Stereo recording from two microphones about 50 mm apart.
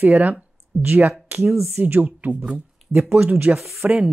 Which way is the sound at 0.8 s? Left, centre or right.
Right.